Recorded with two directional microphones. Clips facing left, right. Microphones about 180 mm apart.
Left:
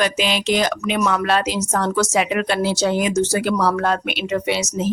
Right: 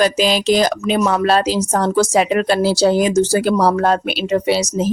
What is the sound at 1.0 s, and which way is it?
Speech, 35° right (ahead or behind).